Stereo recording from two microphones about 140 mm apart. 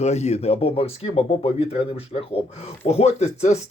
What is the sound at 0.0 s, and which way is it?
Speech, 50° left (ahead or behind).